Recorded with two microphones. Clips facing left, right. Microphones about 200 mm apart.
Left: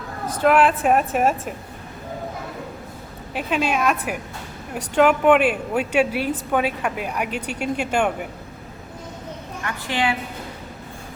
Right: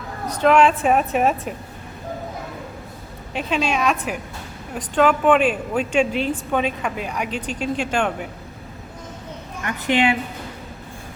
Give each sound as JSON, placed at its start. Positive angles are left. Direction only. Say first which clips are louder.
{"t": 0.4, "sound": "a woman's voice", "louder": "right 1 dB", "side_deg": 5}
{"t": 3.3, "sound": "speech", "louder": "even", "side_deg": 5}
{"t": 9.6, "sound": "a woman's voice", "louder": "right 5 dB", "side_deg": -20}